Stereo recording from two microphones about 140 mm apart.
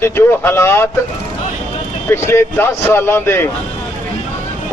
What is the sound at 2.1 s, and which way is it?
Speech, 20° left (ahead or behind).